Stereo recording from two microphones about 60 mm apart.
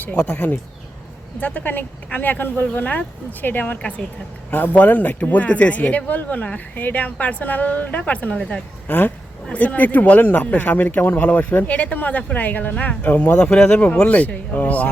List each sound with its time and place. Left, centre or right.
0.1 s speech: centre
3.8 s speech: centre